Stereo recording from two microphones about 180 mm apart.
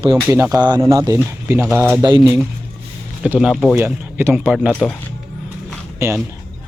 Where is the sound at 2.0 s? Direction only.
25° right (ahead or behind).